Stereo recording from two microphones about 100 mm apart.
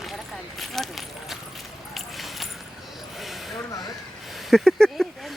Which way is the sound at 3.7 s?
40° left (ahead or behind).